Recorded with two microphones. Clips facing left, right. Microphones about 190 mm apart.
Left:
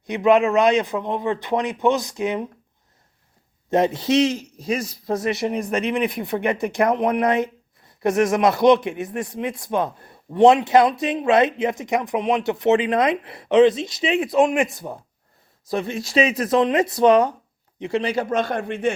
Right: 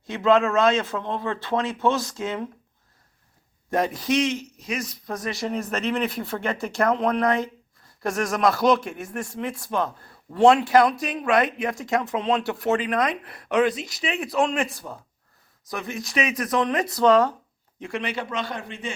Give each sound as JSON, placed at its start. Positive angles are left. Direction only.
{"t": 0.1, "sound": "a man's voice", "side_deg": 15}
{"t": 3.7, "sound": "speech", "side_deg": 25}
{"t": 18.0, "sound": "a man's voice", "side_deg": 40}